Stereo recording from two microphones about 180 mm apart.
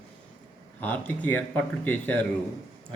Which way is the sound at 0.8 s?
10° left (ahead or behind).